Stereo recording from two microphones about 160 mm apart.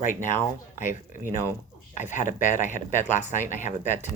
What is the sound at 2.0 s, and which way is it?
Speech, 50° left (ahead or behind).